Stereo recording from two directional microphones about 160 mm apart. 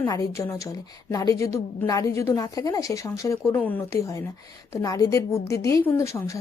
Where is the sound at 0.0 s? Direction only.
20° left (ahead or behind).